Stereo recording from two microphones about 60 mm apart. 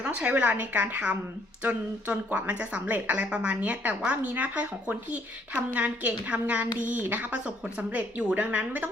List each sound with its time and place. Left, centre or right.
0.1 s speech: centre